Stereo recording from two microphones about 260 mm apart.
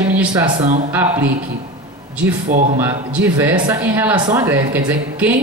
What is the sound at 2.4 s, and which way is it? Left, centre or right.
Speech, right.